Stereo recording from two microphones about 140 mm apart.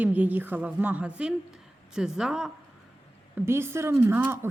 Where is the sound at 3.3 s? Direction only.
15° right (ahead or behind).